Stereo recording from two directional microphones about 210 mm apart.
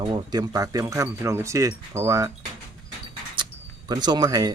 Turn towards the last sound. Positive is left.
turn(degrees=-20)  # may be behind; listen again after turning